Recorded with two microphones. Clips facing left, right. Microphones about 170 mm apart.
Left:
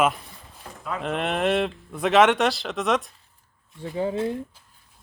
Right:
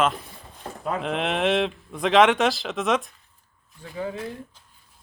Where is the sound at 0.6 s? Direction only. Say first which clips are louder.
Right 6 dB; 40° right (ahead or behind).